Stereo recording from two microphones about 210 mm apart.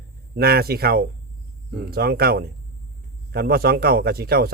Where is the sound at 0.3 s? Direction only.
45° right (ahead or behind).